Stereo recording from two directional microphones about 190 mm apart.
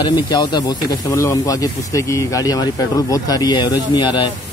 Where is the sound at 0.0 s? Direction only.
20° left (ahead or behind).